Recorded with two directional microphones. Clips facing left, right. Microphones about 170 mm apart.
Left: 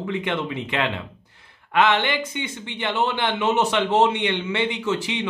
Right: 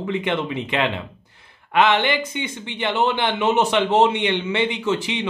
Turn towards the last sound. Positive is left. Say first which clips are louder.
# right 2 dB
turn(degrees=-20)  # may be behind; listen again after turning